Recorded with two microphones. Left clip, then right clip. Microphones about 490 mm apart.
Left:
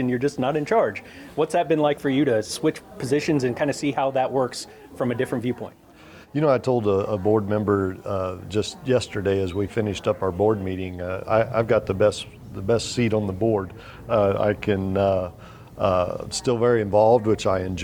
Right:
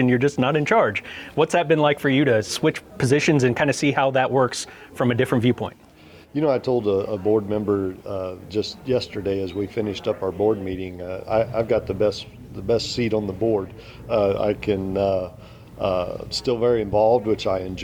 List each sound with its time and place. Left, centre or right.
0.0 s speech: right
6.3 s speech: left